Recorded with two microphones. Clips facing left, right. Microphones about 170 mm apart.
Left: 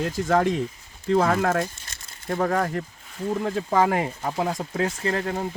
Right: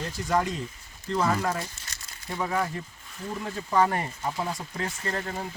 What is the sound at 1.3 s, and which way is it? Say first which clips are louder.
Speech: left 5 dB; 90° left.